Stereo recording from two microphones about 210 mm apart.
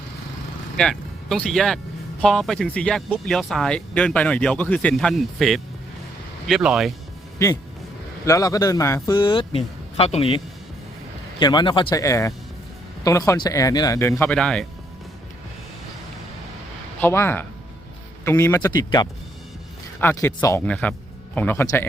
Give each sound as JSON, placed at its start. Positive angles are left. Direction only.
{"t": 0.8, "sound": "speech", "side_deg": 5}
{"t": 7.3, "sound": "a man's voice", "side_deg": 15}
{"t": 17.0, "sound": "speech", "side_deg": 10}